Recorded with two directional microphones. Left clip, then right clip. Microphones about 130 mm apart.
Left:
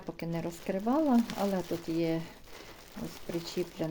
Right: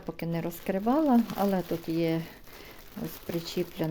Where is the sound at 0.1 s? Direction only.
30° right (ahead or behind).